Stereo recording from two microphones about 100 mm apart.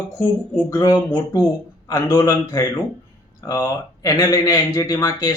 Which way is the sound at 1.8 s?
30° left (ahead or behind).